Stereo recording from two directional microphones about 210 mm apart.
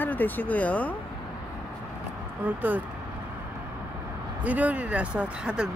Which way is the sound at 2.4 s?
10° right (ahead or behind).